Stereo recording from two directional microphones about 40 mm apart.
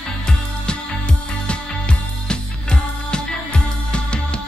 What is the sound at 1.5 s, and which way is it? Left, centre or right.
Music, left.